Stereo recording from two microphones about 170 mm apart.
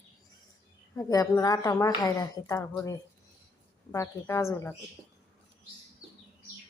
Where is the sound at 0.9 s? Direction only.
20° left (ahead or behind).